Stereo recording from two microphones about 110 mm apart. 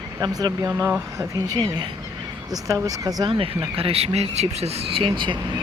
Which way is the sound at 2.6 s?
30° right (ahead or behind).